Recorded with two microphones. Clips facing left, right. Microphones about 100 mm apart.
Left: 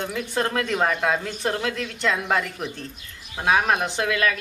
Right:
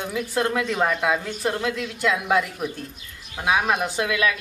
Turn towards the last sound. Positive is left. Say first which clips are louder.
# even
turn(degrees=-5)  # may be behind; listen again after turning